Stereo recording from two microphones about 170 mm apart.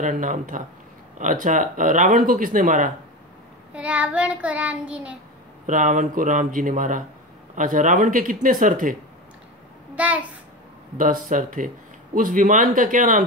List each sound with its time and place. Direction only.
0.0 s a man's voice: 50° right (ahead or behind)
3.7 s child singing: 5° right (ahead or behind)
5.7 s a man's voice: 50° right (ahead or behind)
9.9 s a child's voice: 10° right (ahead or behind)
11.0 s a man's voice: 50° right (ahead or behind)